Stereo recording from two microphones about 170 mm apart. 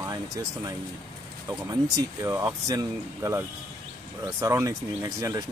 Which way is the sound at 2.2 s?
15° right (ahead or behind).